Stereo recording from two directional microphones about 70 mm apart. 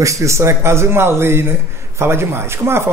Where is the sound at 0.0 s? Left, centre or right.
Right.